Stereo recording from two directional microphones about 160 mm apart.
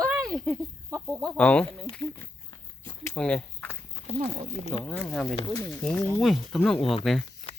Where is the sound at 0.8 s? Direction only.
20° right (ahead or behind).